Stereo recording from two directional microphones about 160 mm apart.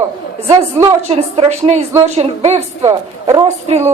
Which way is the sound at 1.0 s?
40° right (ahead or behind).